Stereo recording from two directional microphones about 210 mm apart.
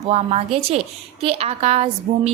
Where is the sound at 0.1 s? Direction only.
30° right (ahead or behind).